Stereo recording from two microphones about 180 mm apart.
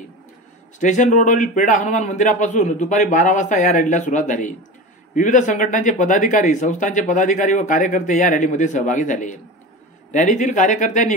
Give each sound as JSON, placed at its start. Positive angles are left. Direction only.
{"t": 0.7, "sound": "speech", "side_deg": 45}